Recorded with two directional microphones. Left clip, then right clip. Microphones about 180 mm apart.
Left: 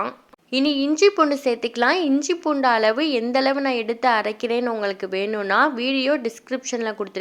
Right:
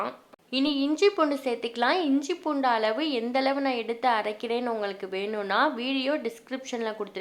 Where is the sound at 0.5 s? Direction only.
25° left (ahead or behind).